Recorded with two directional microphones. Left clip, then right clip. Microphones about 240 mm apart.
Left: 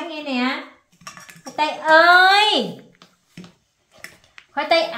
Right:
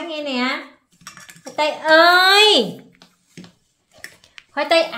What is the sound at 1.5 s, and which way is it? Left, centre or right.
A woman's voice, right.